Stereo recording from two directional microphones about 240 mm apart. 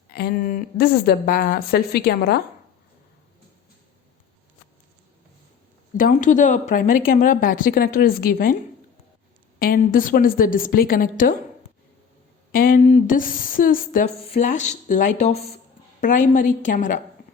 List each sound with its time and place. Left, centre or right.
0.1 s a woman's voice: left
6.0 s a woman's voice: left
9.6 s a woman's voice: left
12.5 s a woman's voice: left